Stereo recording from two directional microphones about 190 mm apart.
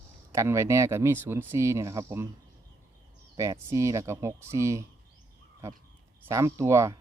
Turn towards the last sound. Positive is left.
turn(degrees=-15)  # may be behind; listen again after turning